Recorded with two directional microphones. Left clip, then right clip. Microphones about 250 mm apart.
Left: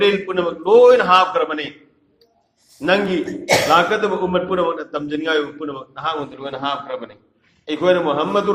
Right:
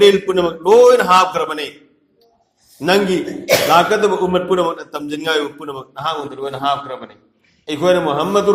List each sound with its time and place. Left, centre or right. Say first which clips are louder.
0.0 s a man's voice: right 5 dB; right
2.8 s a man's voice: right 2 dB; right